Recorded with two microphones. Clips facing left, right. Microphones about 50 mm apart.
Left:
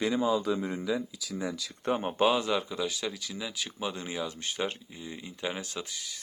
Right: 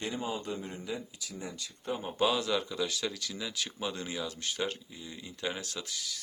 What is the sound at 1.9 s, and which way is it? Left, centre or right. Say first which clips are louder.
Speech: left 6 dB; left.